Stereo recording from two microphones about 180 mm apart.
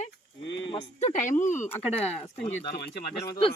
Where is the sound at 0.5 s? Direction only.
30° left (ahead or behind).